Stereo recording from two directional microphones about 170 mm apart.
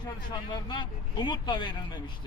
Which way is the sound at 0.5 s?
25° left (ahead or behind).